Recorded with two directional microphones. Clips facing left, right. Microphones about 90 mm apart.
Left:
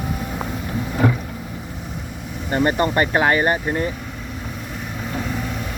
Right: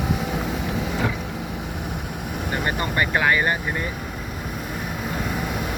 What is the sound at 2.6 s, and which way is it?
Speech, 50° left (ahead or behind).